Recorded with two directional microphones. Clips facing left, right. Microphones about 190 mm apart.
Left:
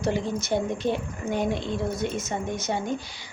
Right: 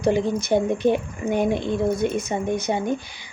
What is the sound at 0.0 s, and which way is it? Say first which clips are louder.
Speech: right 6 dB; 15° right (ahead or behind).